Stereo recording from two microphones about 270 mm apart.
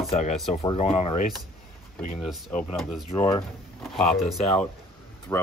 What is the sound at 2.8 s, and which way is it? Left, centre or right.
Speech, centre.